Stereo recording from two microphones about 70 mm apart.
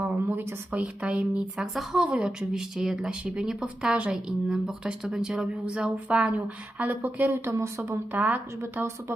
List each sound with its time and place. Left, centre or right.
0.0 s a sound: right
0.8 s speech: centre
7.3 s a woman's voice: right
8.1 s speech: right